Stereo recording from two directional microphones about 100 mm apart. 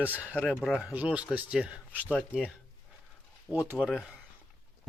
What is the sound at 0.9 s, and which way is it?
Speech, 15° right (ahead or behind).